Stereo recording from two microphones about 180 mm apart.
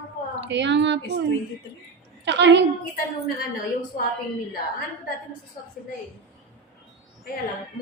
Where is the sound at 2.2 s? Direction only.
75° right (ahead or behind).